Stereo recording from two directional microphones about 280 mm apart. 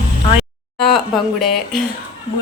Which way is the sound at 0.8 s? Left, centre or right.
Centre.